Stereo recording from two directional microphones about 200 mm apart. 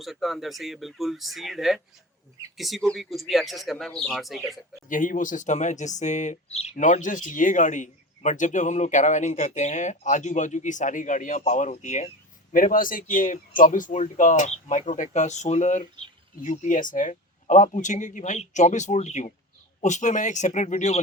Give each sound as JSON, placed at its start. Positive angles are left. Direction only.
{"t": 0.0, "sound": "speech", "side_deg": 0}
{"t": 4.9, "sound": "speech", "side_deg": 40}